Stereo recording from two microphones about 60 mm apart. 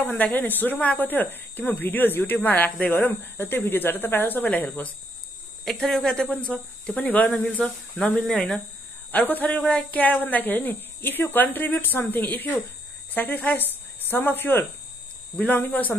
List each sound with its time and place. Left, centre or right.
0.0 s speech: left
5.7 s speech: centre
8.1 s speech: centre
9.1 s speech: left
9.6 s speech: centre